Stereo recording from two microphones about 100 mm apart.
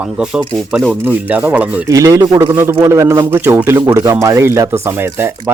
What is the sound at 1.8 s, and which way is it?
A man's voice, 35° right (ahead or behind).